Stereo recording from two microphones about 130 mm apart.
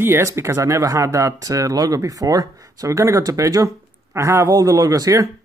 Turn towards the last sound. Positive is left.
turn(degrees=-25)  # may be behind; listen again after turning